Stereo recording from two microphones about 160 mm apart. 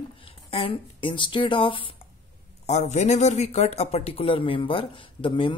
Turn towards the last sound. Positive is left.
turn(degrees=30)  # may be behind; listen again after turning